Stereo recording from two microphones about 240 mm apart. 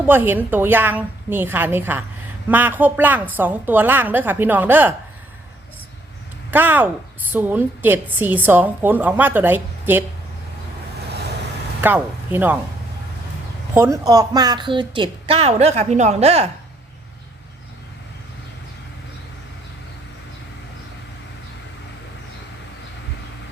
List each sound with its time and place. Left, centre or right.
0.0 s a woman's voice: centre
6.5 s a woman's voice: centre
11.8 s speech: centre
13.7 s a woman's voice: centre